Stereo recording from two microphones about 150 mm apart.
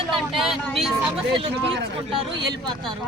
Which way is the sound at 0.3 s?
Centre (ahead or behind).